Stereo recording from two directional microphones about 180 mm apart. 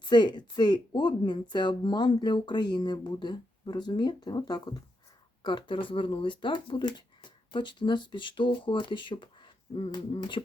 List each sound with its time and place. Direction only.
0.0 s speech: 25° left (ahead or behind)